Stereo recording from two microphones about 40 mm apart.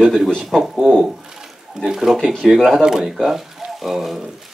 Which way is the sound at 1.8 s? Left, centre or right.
Centre.